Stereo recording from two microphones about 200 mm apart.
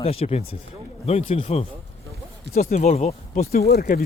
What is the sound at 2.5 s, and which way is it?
Speech, 50° left (ahead or behind).